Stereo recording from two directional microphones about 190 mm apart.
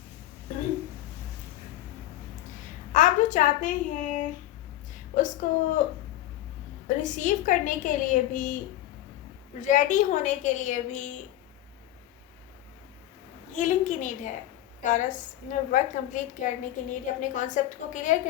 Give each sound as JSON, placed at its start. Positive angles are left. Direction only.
{"t": 2.9, "sound": "a child's voice", "side_deg": 40}
{"t": 6.8, "sound": "a woman's voice", "side_deg": 40}
{"t": 9.6, "sound": "a woman's voice", "side_deg": 40}
{"t": 13.6, "sound": "a woman's voice", "side_deg": 40}